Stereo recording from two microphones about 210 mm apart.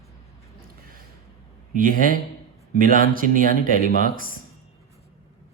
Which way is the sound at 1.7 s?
40° right (ahead or behind).